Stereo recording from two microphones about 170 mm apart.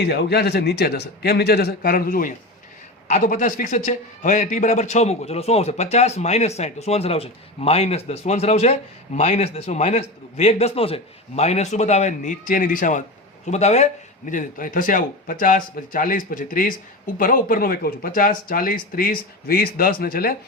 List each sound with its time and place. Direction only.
0.0 s a man's voice: 75° left (ahead or behind)